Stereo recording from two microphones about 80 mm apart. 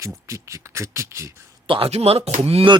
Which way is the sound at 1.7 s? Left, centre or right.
Right.